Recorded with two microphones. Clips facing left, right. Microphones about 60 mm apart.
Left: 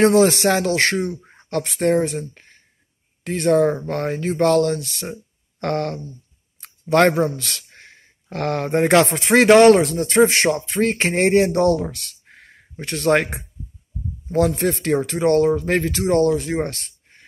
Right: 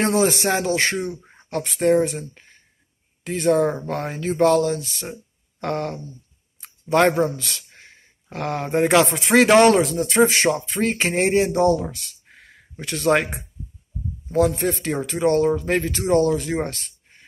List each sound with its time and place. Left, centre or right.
0.0 s music: left
1.5 s speech: left
5.6 s music: left
6.6 s a sound: left
7.3 s speech: left
9.1 s speech: left
9.7 s speech: left
12.8 s speech: left
16.6 s a sound: left